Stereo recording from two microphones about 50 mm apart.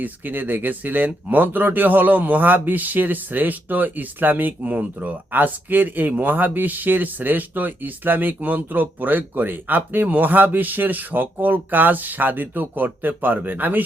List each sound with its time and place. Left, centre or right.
0.0 s speech: right